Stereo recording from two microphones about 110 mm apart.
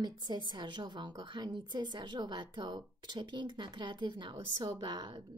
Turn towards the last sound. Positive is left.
turn(degrees=-40)  # may be behind; listen again after turning